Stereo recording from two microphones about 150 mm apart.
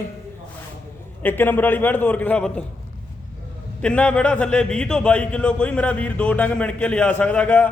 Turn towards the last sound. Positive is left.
turn(degrees=10)  # may be behind; listen again after turning